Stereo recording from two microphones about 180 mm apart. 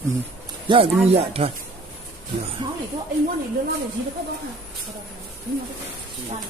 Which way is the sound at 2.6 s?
25° right (ahead or behind).